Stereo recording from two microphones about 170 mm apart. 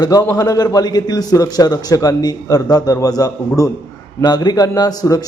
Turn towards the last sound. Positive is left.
turn(degrees=20)  # may be behind; listen again after turning